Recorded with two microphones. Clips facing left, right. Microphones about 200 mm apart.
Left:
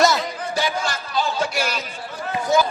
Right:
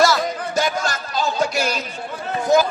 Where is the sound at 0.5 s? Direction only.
45° right (ahead or behind).